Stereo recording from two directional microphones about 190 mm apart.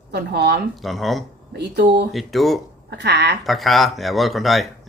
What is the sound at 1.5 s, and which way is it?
Speech, 60° right (ahead or behind).